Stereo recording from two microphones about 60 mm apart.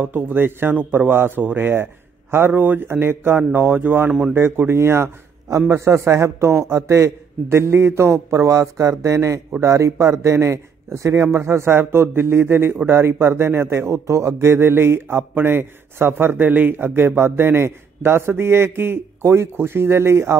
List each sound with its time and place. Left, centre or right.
0.0 s a man's voice: right